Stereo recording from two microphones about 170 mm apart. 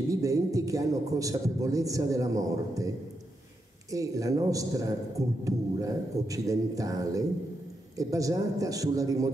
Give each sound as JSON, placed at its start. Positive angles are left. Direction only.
{"t": 0.1, "sound": "a man's voice", "side_deg": -20}
{"t": 3.9, "sound": "a man's voice", "side_deg": -20}